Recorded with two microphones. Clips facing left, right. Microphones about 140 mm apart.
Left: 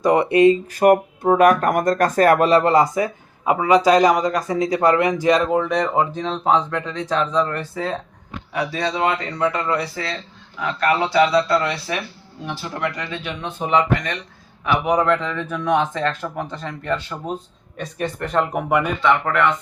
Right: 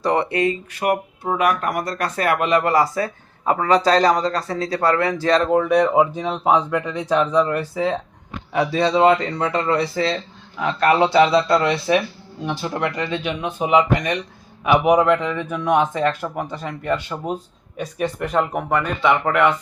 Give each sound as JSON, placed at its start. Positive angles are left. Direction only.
{"t": 0.0, "sound": "speech", "side_deg": 20}
{"t": 0.7, "sound": "speech", "side_deg": 45}
{"t": 5.5, "sound": "speech", "side_deg": -5}
{"t": 8.5, "sound": "speech", "side_deg": -30}